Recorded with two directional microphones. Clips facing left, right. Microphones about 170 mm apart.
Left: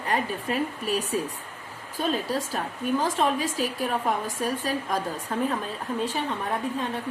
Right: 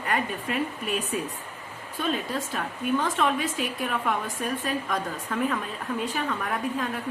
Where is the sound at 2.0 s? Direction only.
35° left (ahead or behind).